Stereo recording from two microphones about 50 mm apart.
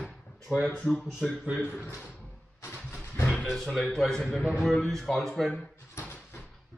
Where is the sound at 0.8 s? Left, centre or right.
Centre.